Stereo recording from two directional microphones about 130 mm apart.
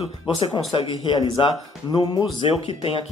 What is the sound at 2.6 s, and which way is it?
Speech, 45° left (ahead or behind).